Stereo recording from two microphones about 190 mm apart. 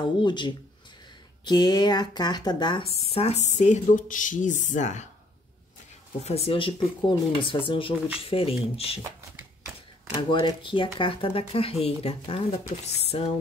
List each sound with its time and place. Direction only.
0.0 s a woman's voice: 25° left (ahead or behind); by 5.0 s 40° left (ahead or behind)
6.2 s a woman's voice: 30° left (ahead or behind)
10.1 s speech: 25° left (ahead or behind)